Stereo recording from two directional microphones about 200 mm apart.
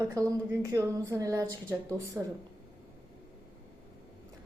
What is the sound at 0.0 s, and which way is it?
A woman's voice, 15° right (ahead or behind).